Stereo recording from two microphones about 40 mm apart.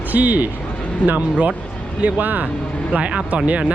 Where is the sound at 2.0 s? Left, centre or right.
Right.